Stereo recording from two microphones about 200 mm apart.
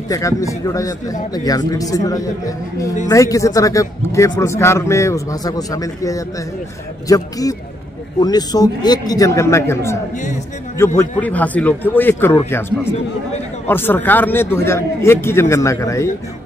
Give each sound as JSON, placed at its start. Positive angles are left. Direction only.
{"t": 0.1, "sound": "a man's voice", "side_deg": 15}
{"t": 11.0, "sound": "speech", "side_deg": 10}